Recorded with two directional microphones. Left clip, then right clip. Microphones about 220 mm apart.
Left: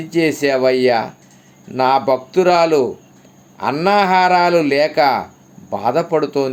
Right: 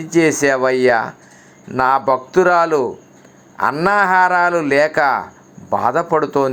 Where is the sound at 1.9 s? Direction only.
30° right (ahead or behind).